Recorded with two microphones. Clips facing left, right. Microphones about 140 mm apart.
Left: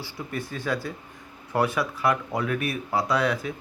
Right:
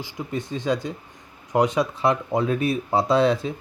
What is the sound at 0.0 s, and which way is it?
Speech, 20° right (ahead or behind).